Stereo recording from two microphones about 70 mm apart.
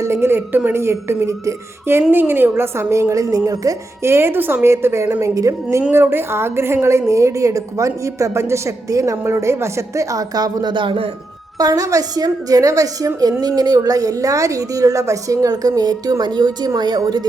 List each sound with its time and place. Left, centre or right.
0.0 s speech: right
2.0 s speech: right
4.0 s speech: right
5.2 s a woman's voice: right
5.9 s a woman's voice: right
11.5 s a woman's voice: right